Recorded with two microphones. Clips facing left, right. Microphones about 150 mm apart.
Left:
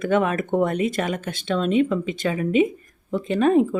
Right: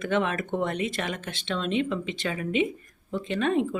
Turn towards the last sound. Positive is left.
turn(degrees=40)  # may be behind; listen again after turning